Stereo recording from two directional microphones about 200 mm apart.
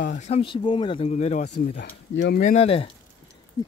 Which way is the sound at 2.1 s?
65° left (ahead or behind).